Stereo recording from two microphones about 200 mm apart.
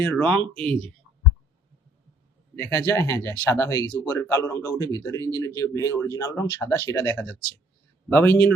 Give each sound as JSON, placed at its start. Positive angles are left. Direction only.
{"t": 0.0, "sound": "speech", "side_deg": 10}
{"t": 2.6, "sound": "speech", "side_deg": 10}